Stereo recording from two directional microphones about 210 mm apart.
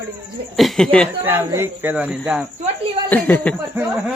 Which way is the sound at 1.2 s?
10° right (ahead or behind).